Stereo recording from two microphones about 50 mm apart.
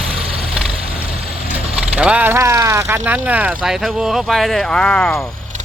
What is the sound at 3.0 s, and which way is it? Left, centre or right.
Speech, right.